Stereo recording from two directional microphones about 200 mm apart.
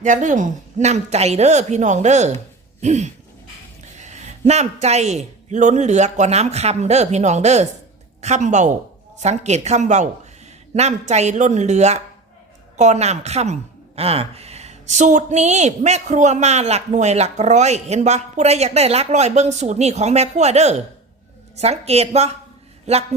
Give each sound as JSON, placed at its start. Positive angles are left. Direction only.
{"t": 0.0, "sound": "speech", "side_deg": -40}